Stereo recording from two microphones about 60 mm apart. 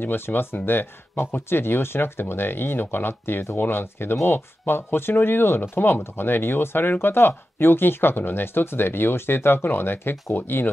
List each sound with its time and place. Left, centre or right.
0.0 s speech: left